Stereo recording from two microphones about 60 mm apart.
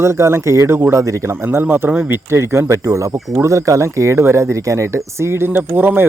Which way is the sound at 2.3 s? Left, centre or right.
Right.